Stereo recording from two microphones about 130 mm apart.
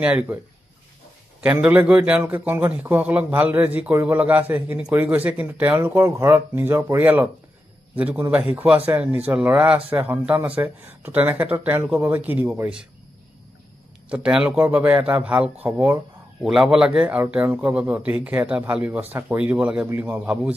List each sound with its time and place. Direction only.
0.0 s a man's voice: 10° right (ahead or behind)
1.4 s a man's voice: 10° right (ahead or behind)
14.0 s a man's voice: 5° right (ahead or behind)